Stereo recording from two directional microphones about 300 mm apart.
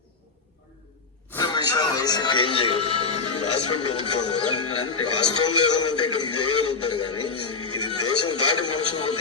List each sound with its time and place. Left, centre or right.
1.3 s a sound: centre
2.6 s speech: left
7.0 s speech: centre
7.3 s music: left
8.3 s speech: left